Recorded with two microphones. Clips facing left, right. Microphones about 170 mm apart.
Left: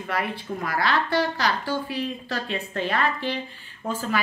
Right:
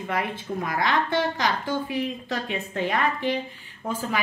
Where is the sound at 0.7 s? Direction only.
20° right (ahead or behind).